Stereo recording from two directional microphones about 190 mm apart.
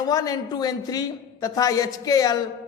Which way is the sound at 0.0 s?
20° left (ahead or behind).